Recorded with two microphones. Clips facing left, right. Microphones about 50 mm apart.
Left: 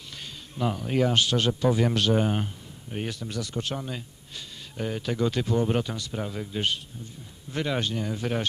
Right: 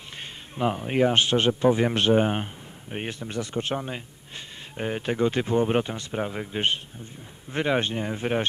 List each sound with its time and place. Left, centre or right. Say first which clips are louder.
0.2 s speech: right 3 dB; right